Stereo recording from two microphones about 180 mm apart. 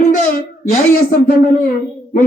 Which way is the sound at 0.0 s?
50° left (ahead or behind).